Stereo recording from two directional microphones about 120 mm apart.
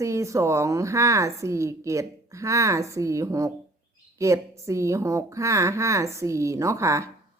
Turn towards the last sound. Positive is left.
turn(degrees=-25)  # may be behind; listen again after turning